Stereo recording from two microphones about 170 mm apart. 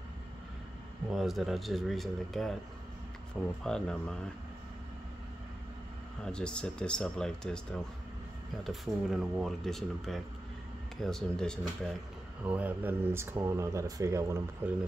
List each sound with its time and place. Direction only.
1.1 s speech: centre (ahead or behind)
3.6 s speech: 5° left (ahead or behind)
6.2 s speech: 5° left (ahead or behind)
12.4 s speech: 10° right (ahead or behind)